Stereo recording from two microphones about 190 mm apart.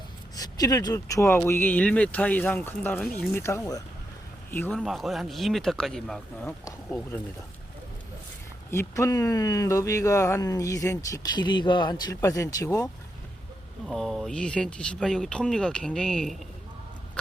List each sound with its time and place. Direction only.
0.3 s speech: 20° left (ahead or behind)
4.8 s speech: centre (ahead or behind)
8.7 s speech: 15° left (ahead or behind)
13.8 s speech: centre (ahead or behind)